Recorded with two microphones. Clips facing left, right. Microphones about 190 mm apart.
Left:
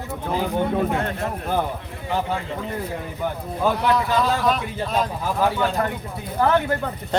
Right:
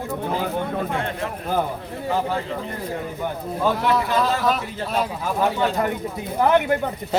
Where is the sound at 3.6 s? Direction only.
Centre (ahead or behind).